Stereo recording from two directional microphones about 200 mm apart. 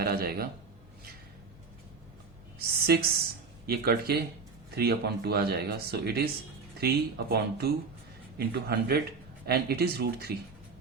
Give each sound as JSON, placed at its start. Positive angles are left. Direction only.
{"t": 0.0, "sound": "speech", "side_deg": -50}
{"t": 2.6, "sound": "speech", "side_deg": -50}